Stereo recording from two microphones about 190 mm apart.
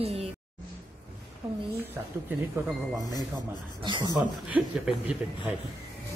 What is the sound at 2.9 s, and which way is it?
Speech, 20° left (ahead or behind).